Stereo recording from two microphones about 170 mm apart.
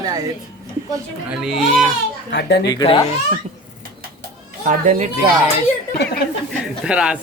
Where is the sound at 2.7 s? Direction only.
25° left (ahead or behind).